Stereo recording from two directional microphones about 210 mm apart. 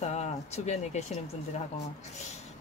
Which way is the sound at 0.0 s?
30° left (ahead or behind).